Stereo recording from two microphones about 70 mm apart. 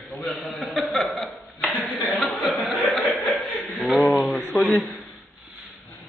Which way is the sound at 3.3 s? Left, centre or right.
Centre.